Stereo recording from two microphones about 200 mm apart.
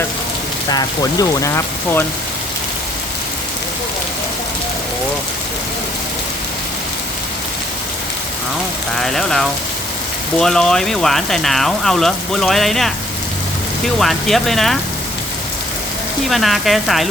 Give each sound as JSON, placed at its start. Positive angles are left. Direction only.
{"t": 0.7, "sound": "speech", "side_deg": 20}
{"t": 9.0, "sound": "speech", "side_deg": 0}
{"t": 16.3, "sound": "speech", "side_deg": 0}